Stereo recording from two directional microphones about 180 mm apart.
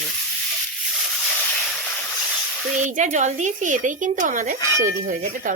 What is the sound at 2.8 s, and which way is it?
Speech, 40° right (ahead or behind).